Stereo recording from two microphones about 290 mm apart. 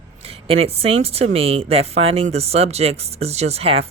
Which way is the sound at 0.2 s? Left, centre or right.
Centre.